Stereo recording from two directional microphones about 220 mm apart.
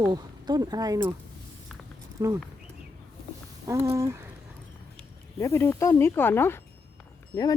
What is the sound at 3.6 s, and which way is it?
Speech, 10° right (ahead or behind).